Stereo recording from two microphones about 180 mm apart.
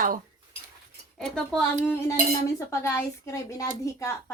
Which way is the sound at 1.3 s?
5° left (ahead or behind).